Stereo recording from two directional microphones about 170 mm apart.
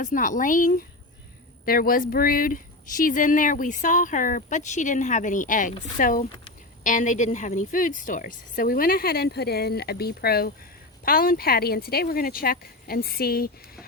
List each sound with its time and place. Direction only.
0.0 s a woman's voice: 50° left (ahead or behind)